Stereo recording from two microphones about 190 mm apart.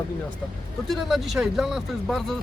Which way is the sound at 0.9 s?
Centre (ahead or behind).